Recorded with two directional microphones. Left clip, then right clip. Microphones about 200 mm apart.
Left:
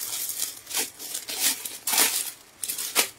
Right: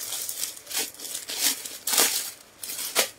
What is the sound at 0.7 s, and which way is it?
Tearing, 20° left (ahead or behind).